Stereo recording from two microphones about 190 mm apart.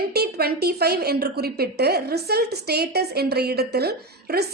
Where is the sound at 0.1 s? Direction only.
55° right (ahead or behind).